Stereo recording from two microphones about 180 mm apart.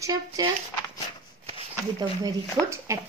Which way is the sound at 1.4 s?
35° right (ahead or behind).